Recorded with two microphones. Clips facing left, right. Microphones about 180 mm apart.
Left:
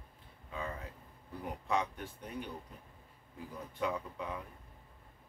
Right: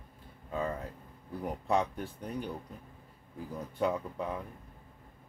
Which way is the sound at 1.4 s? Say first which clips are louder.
Right 5 dB; 40° right (ahead or behind).